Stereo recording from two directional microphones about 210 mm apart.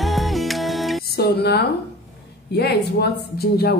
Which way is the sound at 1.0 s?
50° left (ahead or behind).